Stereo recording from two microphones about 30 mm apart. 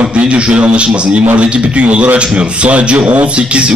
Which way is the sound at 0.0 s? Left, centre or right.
Right.